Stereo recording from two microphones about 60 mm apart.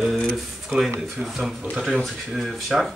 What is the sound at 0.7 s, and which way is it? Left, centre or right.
Speech, centre.